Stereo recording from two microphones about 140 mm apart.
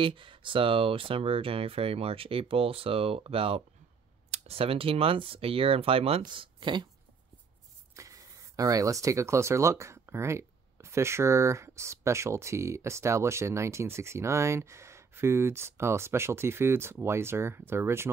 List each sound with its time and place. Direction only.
0.0 s speech: 35° right (ahead or behind)
7.9 s speech: 25° right (ahead or behind)